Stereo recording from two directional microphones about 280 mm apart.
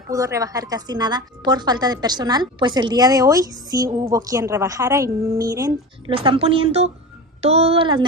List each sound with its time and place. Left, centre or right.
0.1 s a woman's voice: centre